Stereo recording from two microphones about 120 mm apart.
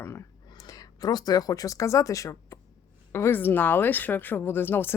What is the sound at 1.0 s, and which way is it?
Speech, 35° left (ahead or behind).